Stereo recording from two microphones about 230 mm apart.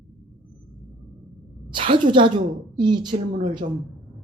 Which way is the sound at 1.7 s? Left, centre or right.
Right.